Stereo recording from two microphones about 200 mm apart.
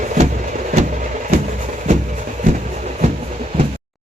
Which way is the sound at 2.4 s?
40° right (ahead or behind).